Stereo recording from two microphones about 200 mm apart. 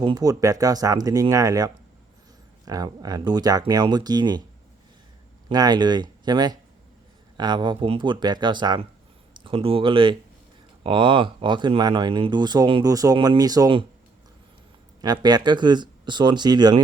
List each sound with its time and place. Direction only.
0.0 s speech: 20° right (ahead or behind)
5.5 s speech: 20° right (ahead or behind)
15.0 s speech: 20° right (ahead or behind)